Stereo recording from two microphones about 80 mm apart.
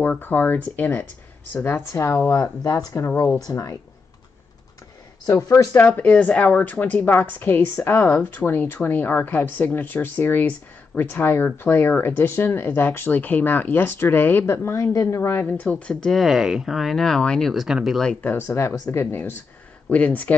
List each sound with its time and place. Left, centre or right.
0.0 s speech: left
5.8 s speech: centre; by 15.4 s left
15.4 s speech: centre
18.2 s speech: left
19.9 s speech: centre